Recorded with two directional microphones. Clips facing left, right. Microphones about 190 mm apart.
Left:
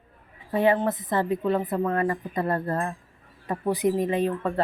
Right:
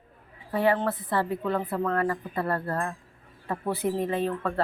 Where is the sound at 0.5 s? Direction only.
20° left (ahead or behind).